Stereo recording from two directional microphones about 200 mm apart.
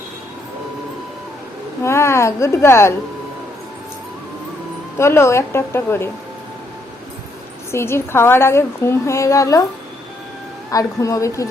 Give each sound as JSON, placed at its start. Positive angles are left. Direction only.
{"t": 1.8, "sound": "a woman's voice", "side_deg": 15}
{"t": 4.9, "sound": "a woman's voice", "side_deg": 15}
{"t": 7.7, "sound": "a woman's voice", "side_deg": 15}
{"t": 10.7, "sound": "a woman's voice", "side_deg": 15}